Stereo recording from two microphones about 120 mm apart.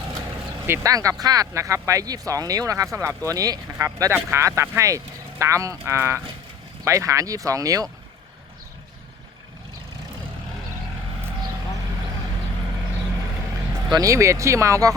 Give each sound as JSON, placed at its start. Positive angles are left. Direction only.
{"t": 0.7, "sound": "speech", "side_deg": -25}
{"t": 13.7, "sound": "speech", "side_deg": -25}